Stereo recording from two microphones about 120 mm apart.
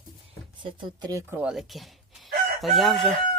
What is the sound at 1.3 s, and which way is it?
Speech, 15° right (ahead or behind).